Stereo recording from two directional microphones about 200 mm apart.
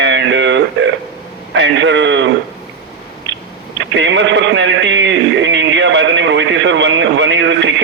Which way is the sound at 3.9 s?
65° right (ahead or behind).